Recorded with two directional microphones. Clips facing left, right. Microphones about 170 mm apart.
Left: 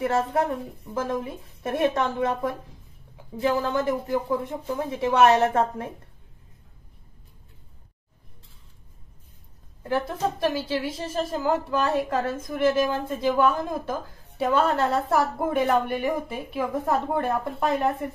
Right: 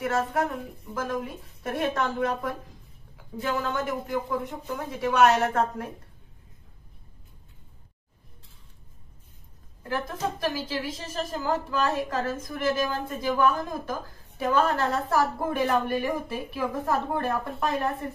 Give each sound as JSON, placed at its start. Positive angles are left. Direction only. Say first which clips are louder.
{"t": 0.0, "sound": "a woman's voice", "louder": "left 3 dB", "side_deg": 30}
{"t": 9.8, "sound": "a woman's voice", "louder": "left 4 dB", "side_deg": 25}